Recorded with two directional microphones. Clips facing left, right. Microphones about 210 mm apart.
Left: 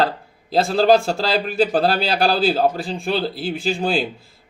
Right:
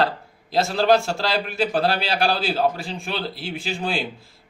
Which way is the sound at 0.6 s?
35° left (ahead or behind).